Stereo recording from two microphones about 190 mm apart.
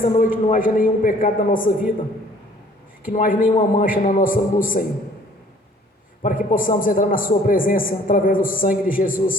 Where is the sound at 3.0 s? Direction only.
45° left (ahead or behind).